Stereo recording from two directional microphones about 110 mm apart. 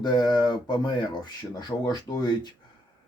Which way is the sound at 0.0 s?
40° left (ahead or behind).